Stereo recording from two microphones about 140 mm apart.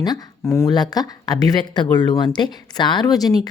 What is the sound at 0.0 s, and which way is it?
A woman's voice, 30° left (ahead or behind).